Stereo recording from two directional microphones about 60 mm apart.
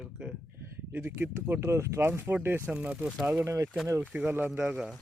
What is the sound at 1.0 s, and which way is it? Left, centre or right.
Speech, right.